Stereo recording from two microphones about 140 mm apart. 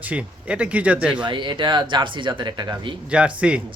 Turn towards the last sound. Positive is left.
turn(degrees=-10)  # may be behind; listen again after turning